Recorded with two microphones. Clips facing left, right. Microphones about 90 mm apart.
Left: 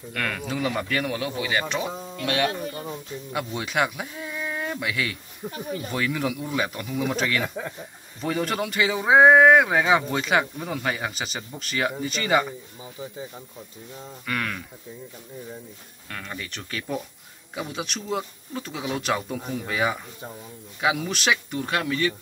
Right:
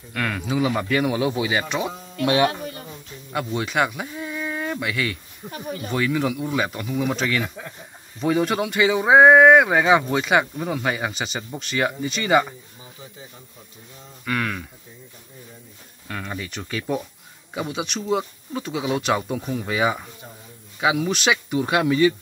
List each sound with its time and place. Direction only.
0.1 s speech: 5° right (ahead or behind)
2.2 s speech: 20° right (ahead or behind)
3.3 s speech: centre (ahead or behind)
14.2 s speech: 5° right (ahead or behind)
16.1 s speech: 10° right (ahead or behind)